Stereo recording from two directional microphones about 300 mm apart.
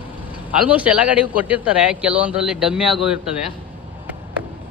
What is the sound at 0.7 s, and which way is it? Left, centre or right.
Speech, centre.